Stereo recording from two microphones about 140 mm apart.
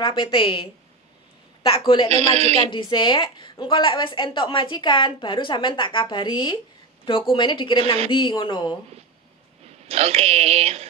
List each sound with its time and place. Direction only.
0.0 s a woman's voice: 35° left (ahead or behind)
2.0 s speech: 50° right (ahead or behind)
2.7 s a woman's voice: 30° left (ahead or behind)
7.8 s speech: 45° right (ahead or behind)
8.1 s a woman's voice: 35° left (ahead or behind)
9.8 s speech: 45° right (ahead or behind)